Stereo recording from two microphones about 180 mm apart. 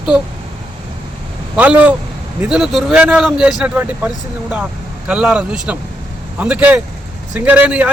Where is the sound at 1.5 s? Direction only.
5° right (ahead or behind).